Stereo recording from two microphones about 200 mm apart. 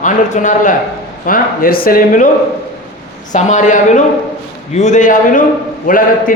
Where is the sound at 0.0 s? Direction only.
40° left (ahead or behind).